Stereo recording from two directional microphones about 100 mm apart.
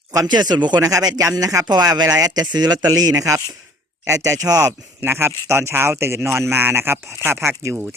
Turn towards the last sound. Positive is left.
turn(degrees=-25)  # may be behind; listen again after turning